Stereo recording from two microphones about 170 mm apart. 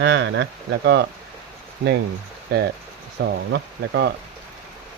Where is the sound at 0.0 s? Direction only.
85° right.